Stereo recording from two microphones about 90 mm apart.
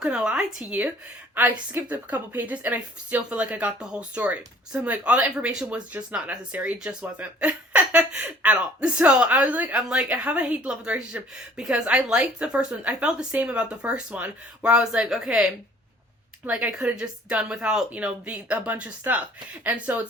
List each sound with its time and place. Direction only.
0.0 s a woman's voice: 10° right (ahead or behind)